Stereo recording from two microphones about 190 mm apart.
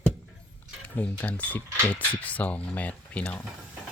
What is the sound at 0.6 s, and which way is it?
Speech, 10° left (ahead or behind).